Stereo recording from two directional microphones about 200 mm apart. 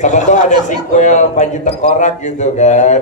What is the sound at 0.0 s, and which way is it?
Speech, 35° left (ahead or behind).